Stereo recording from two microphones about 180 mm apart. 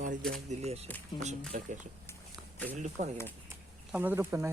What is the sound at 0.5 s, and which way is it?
Speech, 35° right (ahead or behind).